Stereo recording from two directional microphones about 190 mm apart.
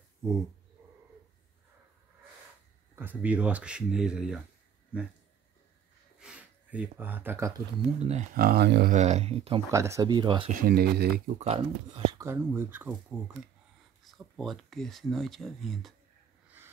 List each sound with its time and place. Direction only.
3.0 s speech: 10° right (ahead or behind)
6.1 s speech: 5° right (ahead or behind)
8.0 s speech: 35° right (ahead or behind)
8.4 s speech: 55° right (ahead or behind)
8.9 s speech: 35° right (ahead or behind)
9.7 s speech: 15° right (ahead or behind)
10.5 s speech: 50° right (ahead or behind)
11.3 s speech: 30° right (ahead or behind); by 15.9 s centre (ahead or behind)